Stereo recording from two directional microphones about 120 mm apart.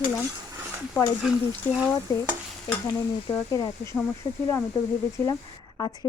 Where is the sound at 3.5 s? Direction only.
30° left (ahead or behind).